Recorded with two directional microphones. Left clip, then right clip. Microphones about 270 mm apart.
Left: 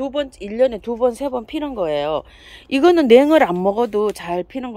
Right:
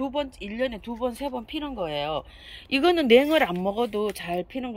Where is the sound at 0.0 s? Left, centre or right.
Centre.